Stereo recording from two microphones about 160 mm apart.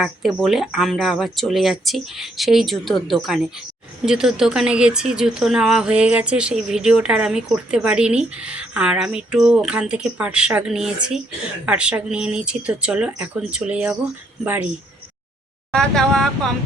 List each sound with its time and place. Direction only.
0.0 s speech: centre (ahead or behind)
15.7 s speech: 5° left (ahead or behind)